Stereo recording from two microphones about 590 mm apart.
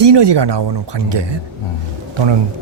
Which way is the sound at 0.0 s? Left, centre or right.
Right.